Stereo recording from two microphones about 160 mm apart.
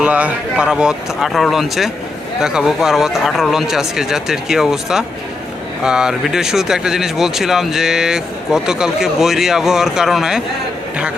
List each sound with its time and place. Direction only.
0.0 s speech: 10° right (ahead or behind)